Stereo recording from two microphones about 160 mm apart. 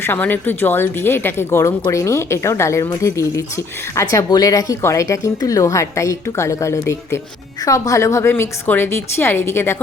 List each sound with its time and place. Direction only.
0.0 s a woman's voice: 15° left (ahead or behind)